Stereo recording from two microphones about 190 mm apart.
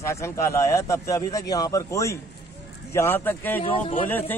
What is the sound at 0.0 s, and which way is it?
Speech, 15° left (ahead or behind).